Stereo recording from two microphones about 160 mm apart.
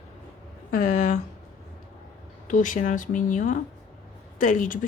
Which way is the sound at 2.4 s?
55° left (ahead or behind).